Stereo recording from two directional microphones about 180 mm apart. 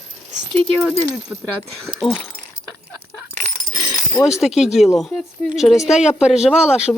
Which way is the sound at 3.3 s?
45° right (ahead or behind).